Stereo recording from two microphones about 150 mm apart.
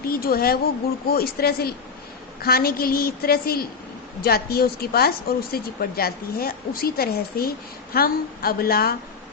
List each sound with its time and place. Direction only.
0.1 s a woman's voice: 80° left